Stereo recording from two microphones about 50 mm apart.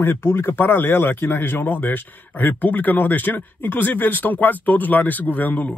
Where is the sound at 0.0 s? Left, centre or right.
Left.